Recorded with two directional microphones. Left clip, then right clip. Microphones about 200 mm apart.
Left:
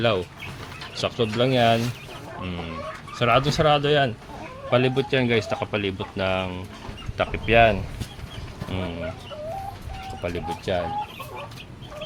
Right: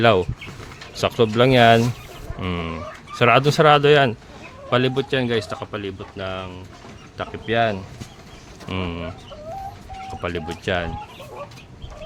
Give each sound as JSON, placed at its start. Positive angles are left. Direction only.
{"t": 0.0, "sound": "speech", "side_deg": -30}
{"t": 4.7, "sound": "speech", "side_deg": -20}
{"t": 5.7, "sound": "speech", "side_deg": 20}
{"t": 7.2, "sound": "speech", "side_deg": 5}
{"t": 8.7, "sound": "speech", "side_deg": -25}
{"t": 10.2, "sound": "speech", "side_deg": -30}